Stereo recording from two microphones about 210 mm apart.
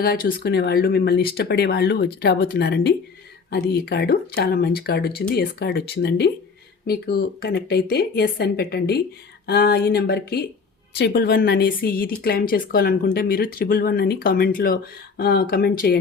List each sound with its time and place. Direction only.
0.0 s speech: 45° left (ahead or behind)